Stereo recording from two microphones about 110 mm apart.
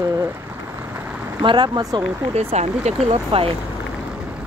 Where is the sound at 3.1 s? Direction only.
55° right (ahead or behind).